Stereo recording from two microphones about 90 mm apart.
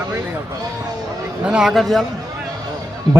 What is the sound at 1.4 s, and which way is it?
Speech, 10° right (ahead or behind).